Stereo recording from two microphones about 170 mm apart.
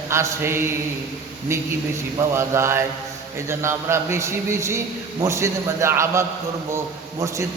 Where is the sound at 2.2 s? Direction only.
15° right (ahead or behind).